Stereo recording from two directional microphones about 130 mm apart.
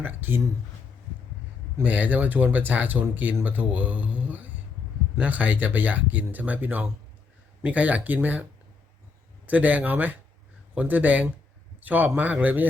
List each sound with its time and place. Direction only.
0.0 s speech: 15° right (ahead or behind)
1.8 s speech: 10° right (ahead or behind)
9.5 s speech: 10° right (ahead or behind)